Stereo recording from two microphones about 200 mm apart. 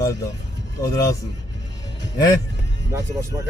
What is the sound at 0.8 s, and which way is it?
Speech, 15° left (ahead or behind).